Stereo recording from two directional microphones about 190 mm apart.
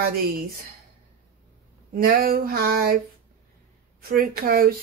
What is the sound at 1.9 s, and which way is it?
Speech, 50° right (ahead or behind).